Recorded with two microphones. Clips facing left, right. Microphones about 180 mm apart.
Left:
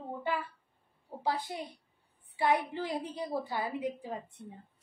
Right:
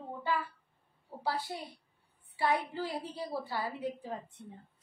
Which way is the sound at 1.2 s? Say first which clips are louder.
Left 2 dB; 20° left (ahead or behind).